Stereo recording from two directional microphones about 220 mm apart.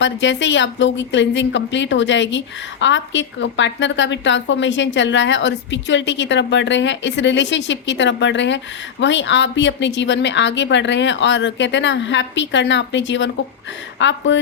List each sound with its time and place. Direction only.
0.0 s a woman's voice: 55° left (ahead or behind)